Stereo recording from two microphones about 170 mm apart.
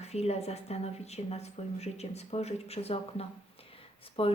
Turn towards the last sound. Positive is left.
turn(degrees=35)  # may be behind; listen again after turning